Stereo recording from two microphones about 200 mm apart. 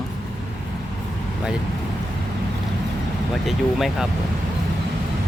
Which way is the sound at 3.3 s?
Centre (ahead or behind).